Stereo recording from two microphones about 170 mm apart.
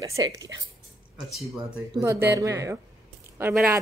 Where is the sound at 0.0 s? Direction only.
20° right (ahead or behind).